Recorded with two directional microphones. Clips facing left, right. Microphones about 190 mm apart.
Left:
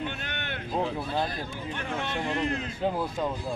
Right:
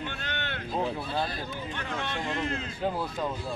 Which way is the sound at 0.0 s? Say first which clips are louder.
Left 1 dB; 15° left (ahead or behind).